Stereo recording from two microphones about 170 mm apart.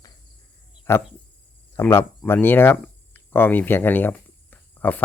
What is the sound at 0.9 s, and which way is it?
Speech, 15° left (ahead or behind).